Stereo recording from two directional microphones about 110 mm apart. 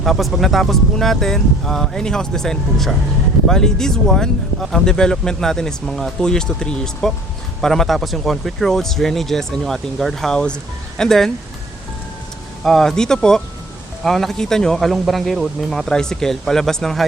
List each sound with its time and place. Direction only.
0.0 s speech: centre (ahead or behind)
12.6 s speech: 5° left (ahead or behind)